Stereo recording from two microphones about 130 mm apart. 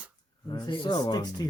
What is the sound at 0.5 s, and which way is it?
Speech, 40° left (ahead or behind).